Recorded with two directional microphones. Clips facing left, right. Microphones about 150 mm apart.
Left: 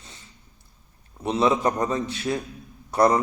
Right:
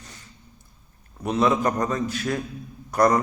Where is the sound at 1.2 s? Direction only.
25° left (ahead or behind).